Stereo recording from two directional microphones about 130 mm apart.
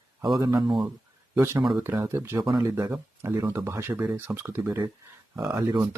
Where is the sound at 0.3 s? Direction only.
30° right (ahead or behind).